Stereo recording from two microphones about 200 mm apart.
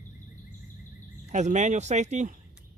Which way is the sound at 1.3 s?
35° right (ahead or behind).